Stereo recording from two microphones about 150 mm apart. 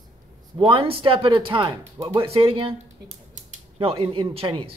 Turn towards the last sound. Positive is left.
turn(degrees=-35)  # may be behind; listen again after turning